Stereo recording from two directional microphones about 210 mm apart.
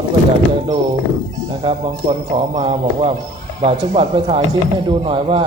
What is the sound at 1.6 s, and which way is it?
Speech, 25° right (ahead or behind).